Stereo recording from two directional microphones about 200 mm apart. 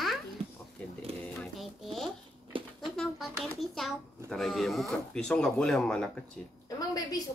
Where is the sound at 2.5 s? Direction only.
25° right (ahead or behind).